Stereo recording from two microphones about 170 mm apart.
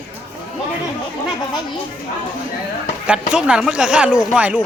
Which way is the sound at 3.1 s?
5° right (ahead or behind).